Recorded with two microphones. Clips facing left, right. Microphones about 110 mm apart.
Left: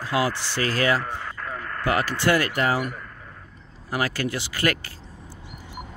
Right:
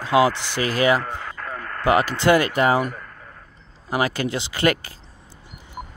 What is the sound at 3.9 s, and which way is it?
Speech, 20° right (ahead or behind).